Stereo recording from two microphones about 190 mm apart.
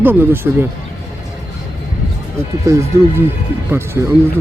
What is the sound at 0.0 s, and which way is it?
Speech, 10° right (ahead or behind).